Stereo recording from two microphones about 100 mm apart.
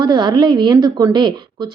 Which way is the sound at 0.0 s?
45° right (ahead or behind).